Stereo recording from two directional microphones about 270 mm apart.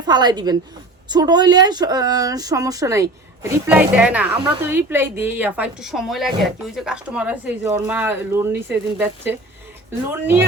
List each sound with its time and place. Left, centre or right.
0.0 s a woman's voice: centre